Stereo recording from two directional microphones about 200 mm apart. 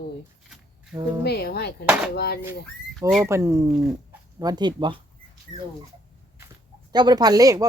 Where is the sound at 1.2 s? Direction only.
55° left (ahead or behind).